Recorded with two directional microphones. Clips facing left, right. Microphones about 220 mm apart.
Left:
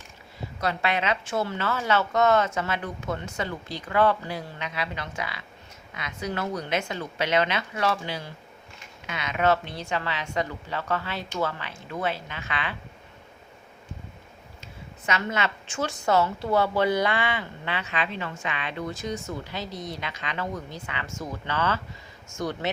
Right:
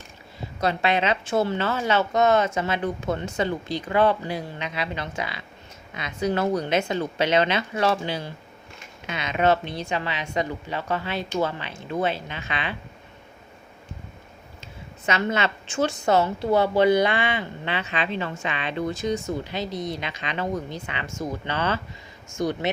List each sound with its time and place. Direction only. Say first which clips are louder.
0.6 s speech: right 4 dB; 25° right (ahead or behind)
14.6 s speech: right 5 dB; 25° right (ahead or behind)